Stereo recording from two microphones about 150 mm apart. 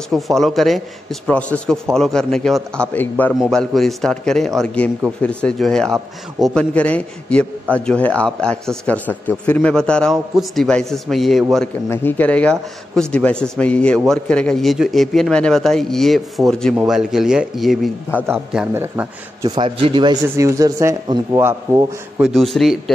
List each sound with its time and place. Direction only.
0.1 s a man's voice: centre (ahead or behind)
3.3 s a man's voice: centre (ahead or behind)
11.9 s a man's voice: 15° left (ahead or behind)
18.8 s speech: 15° right (ahead or behind)
19.5 s a man's voice: 30° right (ahead or behind)
20.2 s speech: 20° right (ahead or behind)
22.2 s a man's voice: centre (ahead or behind)